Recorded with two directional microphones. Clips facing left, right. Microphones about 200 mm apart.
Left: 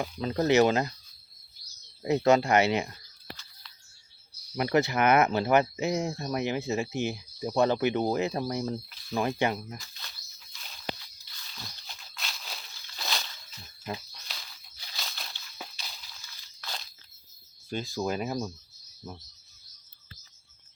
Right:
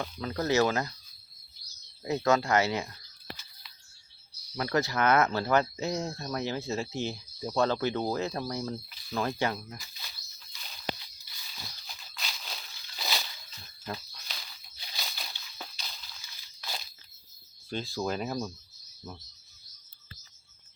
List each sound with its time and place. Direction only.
0.2 s speech: 20° left (ahead or behind)
2.0 s speech: 15° left (ahead or behind)
4.5 s speech: 15° left (ahead or behind)
8.9 s cricket: centre (ahead or behind)
9.1 s speech: 15° left (ahead or behind)
9.7 s a sound: 5° right (ahead or behind)
13.8 s a sound: 15° left (ahead or behind)
14.9 s a sound: 5° right (ahead or behind)
16.6 s crunch: 10° right (ahead or behind)
17.9 s speech: 5° left (ahead or behind)